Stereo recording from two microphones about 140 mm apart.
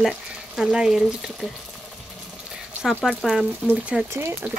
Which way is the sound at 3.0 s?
Centre (ahead or behind).